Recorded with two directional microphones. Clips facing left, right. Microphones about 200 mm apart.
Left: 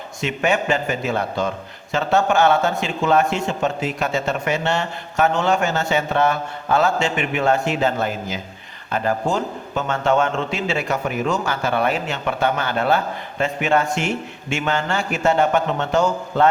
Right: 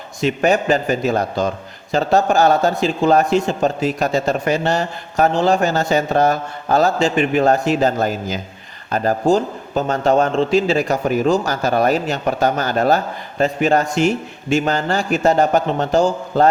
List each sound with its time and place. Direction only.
0.2 s a man's voice: 35° right (ahead or behind)